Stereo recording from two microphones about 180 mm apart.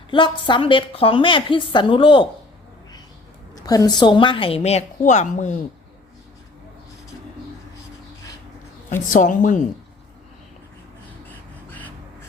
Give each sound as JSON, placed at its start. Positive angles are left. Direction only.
{"t": 0.1, "sound": "a woman's voice", "side_deg": 25}
{"t": 3.7, "sound": "a woman's voice", "side_deg": 20}
{"t": 8.9, "sound": "a woman's voice", "side_deg": 45}
{"t": 11.3, "sound": "a sound", "side_deg": 10}